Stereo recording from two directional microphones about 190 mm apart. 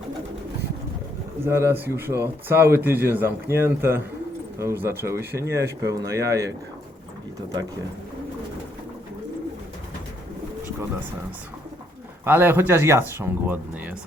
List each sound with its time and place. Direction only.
1.5 s speech: 15° right (ahead or behind)
12.2 s speech: 10° right (ahead or behind)